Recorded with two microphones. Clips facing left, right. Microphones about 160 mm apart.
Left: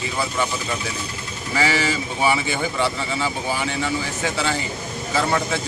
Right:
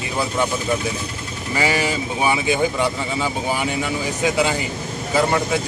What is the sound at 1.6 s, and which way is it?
Speech, 15° right (ahead or behind).